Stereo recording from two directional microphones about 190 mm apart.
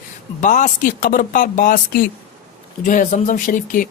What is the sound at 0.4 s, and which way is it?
A man's voice, 40° left (ahead or behind).